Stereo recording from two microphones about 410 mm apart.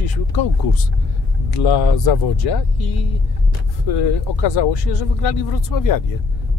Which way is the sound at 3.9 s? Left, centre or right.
Left.